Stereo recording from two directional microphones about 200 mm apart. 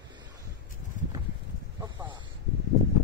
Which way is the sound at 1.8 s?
15° right (ahead or behind).